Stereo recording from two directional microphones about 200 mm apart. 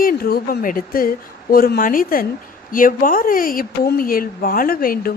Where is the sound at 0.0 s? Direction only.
45° left (ahead or behind).